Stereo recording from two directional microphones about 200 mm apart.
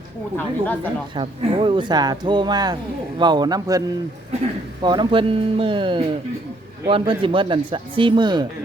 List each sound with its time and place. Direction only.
0.3 s a woman's voice: 10° left (ahead or behind)
1.1 s speech: 25° right (ahead or behind)